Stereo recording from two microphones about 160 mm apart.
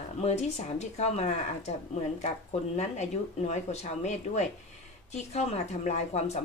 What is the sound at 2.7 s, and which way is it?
A woman's voice, 45° left (ahead or behind).